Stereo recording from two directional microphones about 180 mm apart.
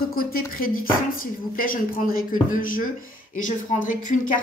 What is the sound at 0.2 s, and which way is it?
A woman's voice, 55° left (ahead or behind).